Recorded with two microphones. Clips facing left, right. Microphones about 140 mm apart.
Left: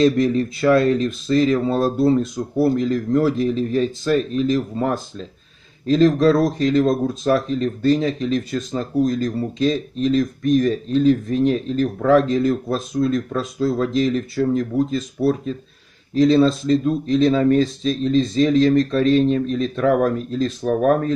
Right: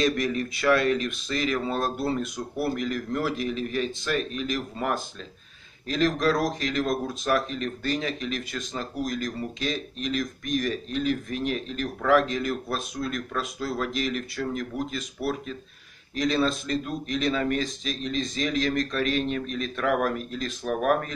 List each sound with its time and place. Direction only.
0.0 s speech: 30° left (ahead or behind)